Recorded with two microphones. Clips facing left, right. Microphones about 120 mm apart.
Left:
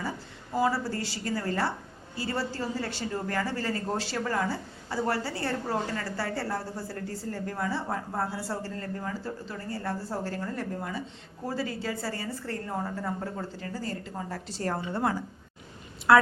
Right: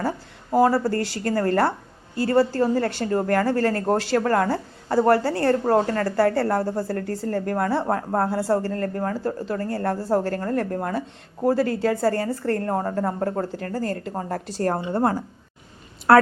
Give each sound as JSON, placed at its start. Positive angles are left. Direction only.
{"t": 0.5, "sound": "a woman's voice", "side_deg": -55}